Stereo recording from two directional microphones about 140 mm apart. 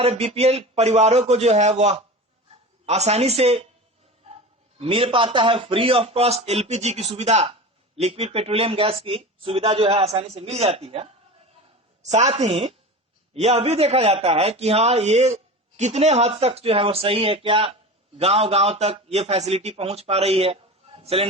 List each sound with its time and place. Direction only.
0.0 s a man's voice: 45° right (ahead or behind)
4.8 s a man's voice: 40° right (ahead or behind)
12.1 s a man's voice: 50° right (ahead or behind)